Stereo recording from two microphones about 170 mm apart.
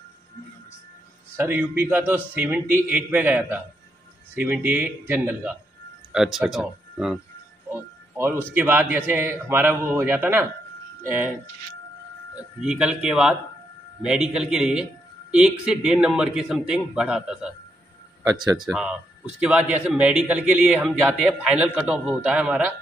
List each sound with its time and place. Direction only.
1.3 s a man's voice: 10° right (ahead or behind)
8.2 s a man's voice: 15° right (ahead or behind)
12.5 s a man's voice: 5° right (ahead or behind)
18.2 s speech: 20° right (ahead or behind)
18.7 s a man's voice: 5° right (ahead or behind)